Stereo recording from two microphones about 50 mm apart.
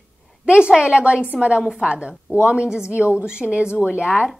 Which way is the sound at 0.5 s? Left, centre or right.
Centre.